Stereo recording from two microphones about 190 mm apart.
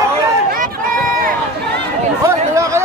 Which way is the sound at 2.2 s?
15° right (ahead or behind).